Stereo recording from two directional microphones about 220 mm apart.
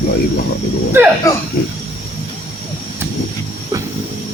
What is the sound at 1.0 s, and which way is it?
Speech, 10° right (ahead or behind).